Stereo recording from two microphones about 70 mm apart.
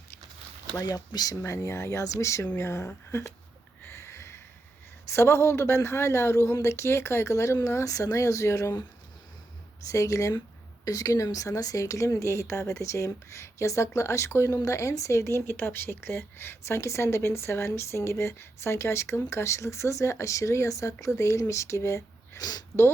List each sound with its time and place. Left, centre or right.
0.8 s speech: left
1.4 s a woman's voice: left
3.8 s a sound: left
5.0 s speech: left
9.9 s a woman's voice: left
22.4 s speech: left